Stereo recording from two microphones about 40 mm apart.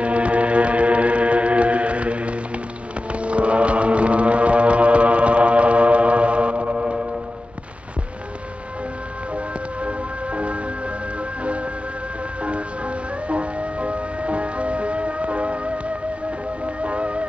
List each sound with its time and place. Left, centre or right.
0.0 s music: right
9.8 s music: right
12.4 s music: right
16.8 s music: right